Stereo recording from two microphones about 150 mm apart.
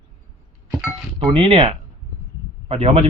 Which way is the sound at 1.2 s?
35° right (ahead or behind).